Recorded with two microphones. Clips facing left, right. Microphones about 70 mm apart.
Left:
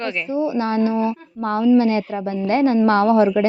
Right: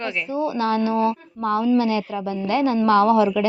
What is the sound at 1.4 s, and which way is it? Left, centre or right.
Speech, left.